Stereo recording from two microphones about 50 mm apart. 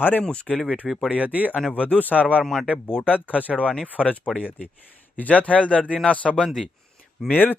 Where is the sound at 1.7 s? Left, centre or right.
Left.